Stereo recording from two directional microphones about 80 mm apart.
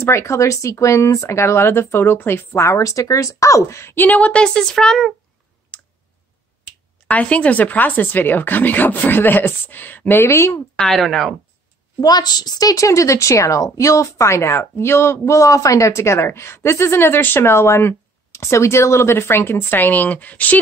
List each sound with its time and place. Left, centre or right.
0.0 s speech: left; by 5.1 s centre
5.7 s clicking: centre
7.1 s speech: centre; by 10.6 s left
10.8 s speech: centre
12.0 s a woman's voice: left; by 20.5 s centre